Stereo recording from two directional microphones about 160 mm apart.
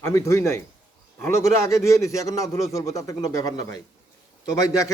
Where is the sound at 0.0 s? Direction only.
20° left (ahead or behind).